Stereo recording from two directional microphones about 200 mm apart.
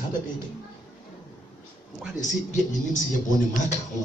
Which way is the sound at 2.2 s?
40° left (ahead or behind).